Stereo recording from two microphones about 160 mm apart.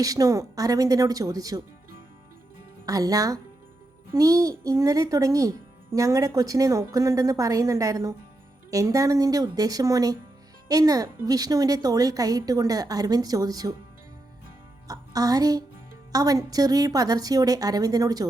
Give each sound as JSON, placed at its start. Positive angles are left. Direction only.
{"t": 0.0, "sound": "a child's voice", "side_deg": -20}
{"t": 2.8, "sound": "a child's voice", "side_deg": -20}
{"t": 14.8, "sound": "a woman's voice", "side_deg": -20}